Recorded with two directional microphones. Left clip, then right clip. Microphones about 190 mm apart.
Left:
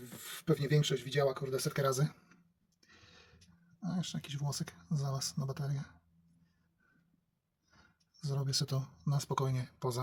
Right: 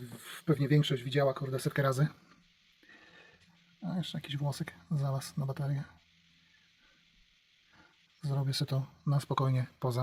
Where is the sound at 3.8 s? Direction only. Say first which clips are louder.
Right 2 dB; 15° right (ahead or behind).